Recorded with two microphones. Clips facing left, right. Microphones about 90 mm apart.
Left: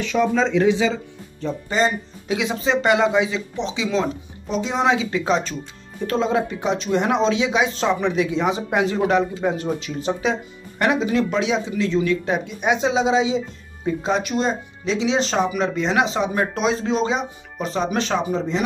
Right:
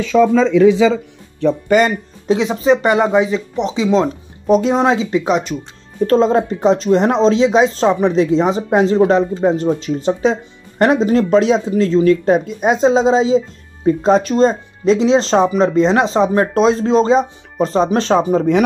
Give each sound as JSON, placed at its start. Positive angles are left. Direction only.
{"t": 1.4, "sound": "speech", "side_deg": -65}
{"t": 2.2, "sound": "speech", "side_deg": -30}
{"t": 4.5, "sound": "speech", "side_deg": -45}
{"t": 5.1, "sound": "speech", "side_deg": -20}
{"t": 6.0, "sound": "speech", "side_deg": -40}
{"t": 10.8, "sound": "speech", "side_deg": -40}